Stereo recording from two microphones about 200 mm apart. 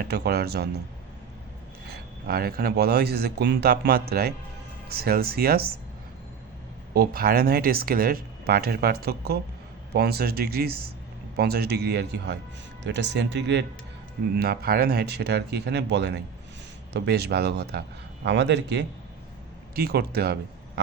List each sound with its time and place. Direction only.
0.0 s speech: 55° right (ahead or behind)
1.9 s speech: 50° right (ahead or behind)
6.9 s a man's voice: 50° right (ahead or behind)